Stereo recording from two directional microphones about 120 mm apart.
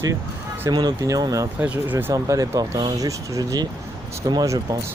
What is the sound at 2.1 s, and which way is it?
Speech, 30° right (ahead or behind).